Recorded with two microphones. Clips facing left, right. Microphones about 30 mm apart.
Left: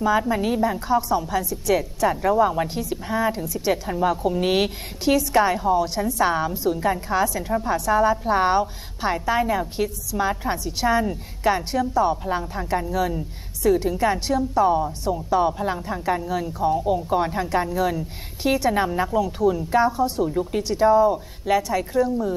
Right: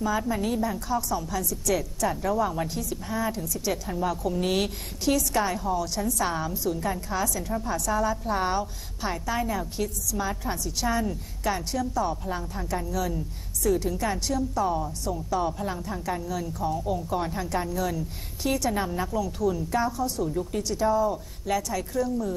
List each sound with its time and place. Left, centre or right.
0.0 s a woman's voice: left